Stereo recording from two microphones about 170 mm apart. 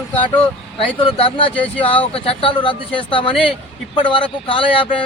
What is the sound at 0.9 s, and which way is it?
Speech, 30° left (ahead or behind).